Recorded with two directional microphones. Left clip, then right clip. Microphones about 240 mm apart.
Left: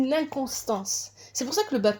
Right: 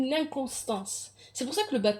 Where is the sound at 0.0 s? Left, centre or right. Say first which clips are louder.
Left 3 dB; left.